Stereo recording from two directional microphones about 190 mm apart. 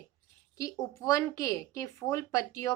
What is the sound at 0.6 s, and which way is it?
A woman's voice, 15° left (ahead or behind).